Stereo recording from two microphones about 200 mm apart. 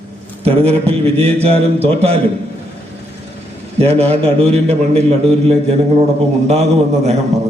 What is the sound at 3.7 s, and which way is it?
A man's voice, 30° right (ahead or behind).